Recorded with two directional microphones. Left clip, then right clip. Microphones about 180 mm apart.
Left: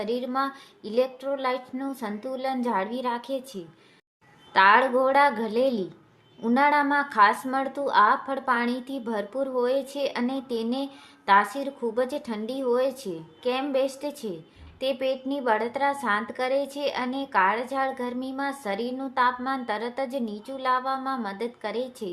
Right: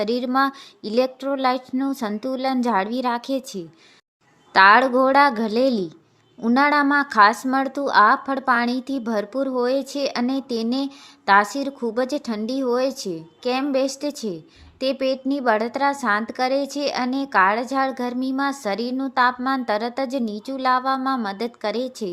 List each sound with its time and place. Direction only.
0.0 s a woman's voice: 40° right (ahead or behind)